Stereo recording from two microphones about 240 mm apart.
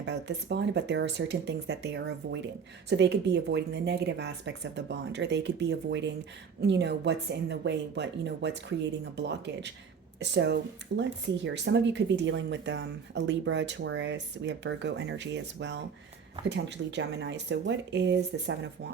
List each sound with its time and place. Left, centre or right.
0.0 s speech: right